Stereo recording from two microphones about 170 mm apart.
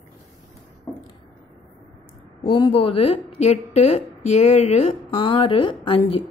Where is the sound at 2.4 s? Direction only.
25° left (ahead or behind).